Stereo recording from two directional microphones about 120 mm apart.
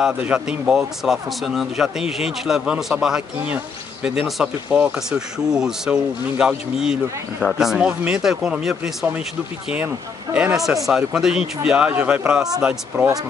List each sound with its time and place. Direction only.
0.0 s speech: 10° right (ahead or behind)
10.3 s speech: 5° right (ahead or behind)